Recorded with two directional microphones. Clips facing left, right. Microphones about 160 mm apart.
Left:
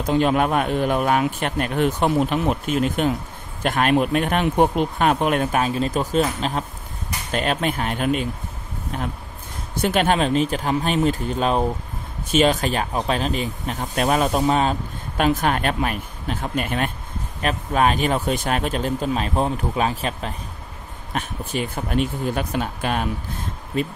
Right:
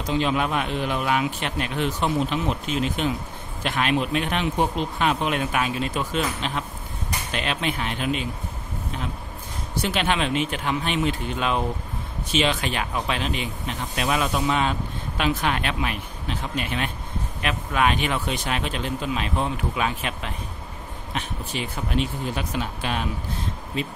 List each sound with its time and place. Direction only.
0.0 s speech: 50° left (ahead or behind)
9.8 s speech: 50° left (ahead or behind)
21.1 s speech: 50° left (ahead or behind)